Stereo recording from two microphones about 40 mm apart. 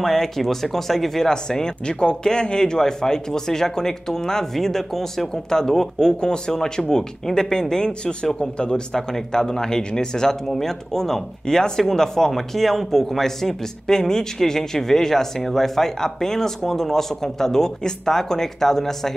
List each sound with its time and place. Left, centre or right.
0.0 s a man's voice: centre